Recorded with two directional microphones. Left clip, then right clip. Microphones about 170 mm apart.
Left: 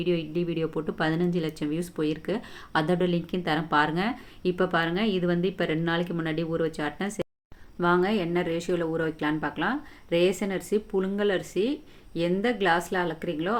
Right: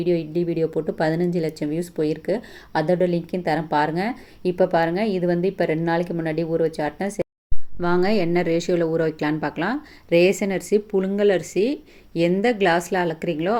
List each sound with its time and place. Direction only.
0.0 s speech: 10° right (ahead or behind)
7.8 s speech: 20° right (ahead or behind)